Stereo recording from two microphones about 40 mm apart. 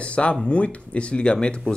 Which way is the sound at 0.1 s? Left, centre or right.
Left.